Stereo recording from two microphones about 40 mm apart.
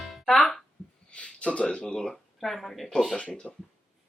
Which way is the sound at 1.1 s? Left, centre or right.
Left.